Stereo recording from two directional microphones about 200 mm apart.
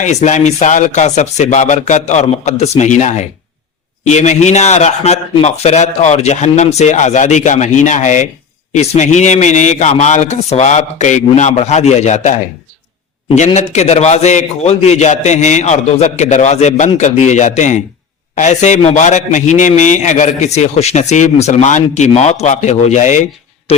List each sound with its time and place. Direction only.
0.0 s a man's voice: 35° left (ahead or behind)
13.3 s a man's voice: 35° left (ahead or behind)